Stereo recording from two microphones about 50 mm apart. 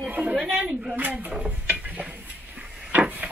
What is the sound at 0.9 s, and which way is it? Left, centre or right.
Speech, right.